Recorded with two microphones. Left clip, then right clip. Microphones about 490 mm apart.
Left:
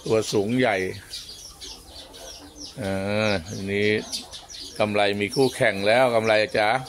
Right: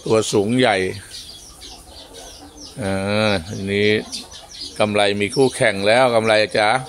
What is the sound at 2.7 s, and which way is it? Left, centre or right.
Speech, left.